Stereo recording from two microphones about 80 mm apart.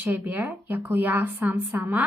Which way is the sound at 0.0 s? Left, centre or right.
Right.